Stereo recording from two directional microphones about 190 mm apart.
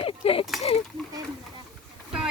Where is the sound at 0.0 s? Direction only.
30° left (ahead or behind).